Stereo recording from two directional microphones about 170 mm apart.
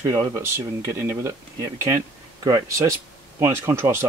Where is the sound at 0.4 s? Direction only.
15° right (ahead or behind).